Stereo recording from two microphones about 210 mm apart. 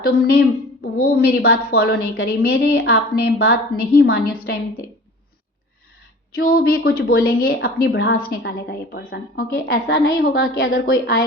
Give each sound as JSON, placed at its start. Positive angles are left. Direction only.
{"t": 0.0, "sound": "a woman's voice", "side_deg": 50}
{"t": 6.3, "sound": "a woman's voice", "side_deg": 45}